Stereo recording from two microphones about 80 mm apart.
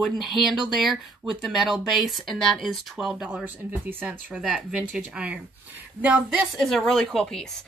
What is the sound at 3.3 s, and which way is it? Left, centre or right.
Speech, right.